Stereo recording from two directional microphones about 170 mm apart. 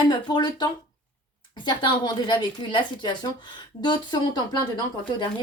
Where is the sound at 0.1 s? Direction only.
25° left (ahead or behind).